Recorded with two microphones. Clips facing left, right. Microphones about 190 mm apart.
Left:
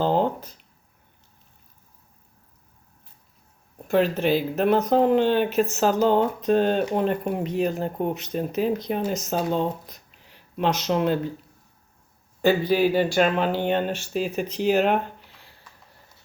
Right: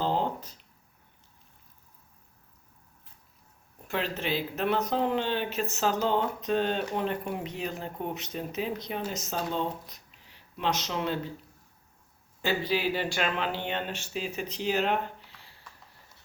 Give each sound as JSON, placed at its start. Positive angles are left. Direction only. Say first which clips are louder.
{"t": 0.0, "sound": "a sound", "louder": "left 7 dB", "side_deg": 55}
{"t": 3.8, "sound": "speech", "louder": "left 11 dB", "side_deg": 45}
{"t": 10.8, "sound": "speech", "louder": "left 9 dB", "side_deg": 50}
{"t": 12.4, "sound": "speech", "louder": "left 9 dB", "side_deg": 50}